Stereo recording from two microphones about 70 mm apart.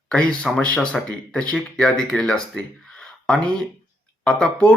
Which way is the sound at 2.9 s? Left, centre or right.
Centre.